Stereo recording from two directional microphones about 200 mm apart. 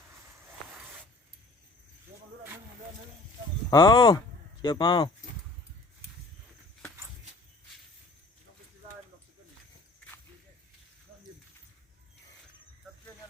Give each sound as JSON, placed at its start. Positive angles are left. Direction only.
{"t": 3.7, "sound": "speech", "side_deg": 20}